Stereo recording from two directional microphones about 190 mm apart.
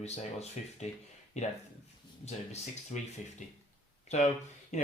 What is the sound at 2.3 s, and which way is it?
Speech, 35° left (ahead or behind).